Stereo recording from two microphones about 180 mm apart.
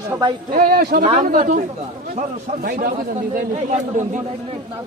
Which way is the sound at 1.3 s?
45° right (ahead or behind).